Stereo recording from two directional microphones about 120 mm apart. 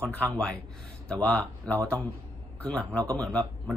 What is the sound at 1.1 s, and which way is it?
A man's voice, 10° left (ahead or behind).